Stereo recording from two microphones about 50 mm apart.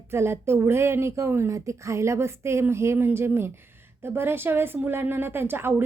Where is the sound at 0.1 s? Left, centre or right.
Right.